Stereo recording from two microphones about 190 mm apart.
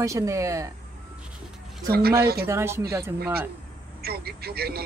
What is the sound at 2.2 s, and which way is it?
Speech, 55° right (ahead or behind).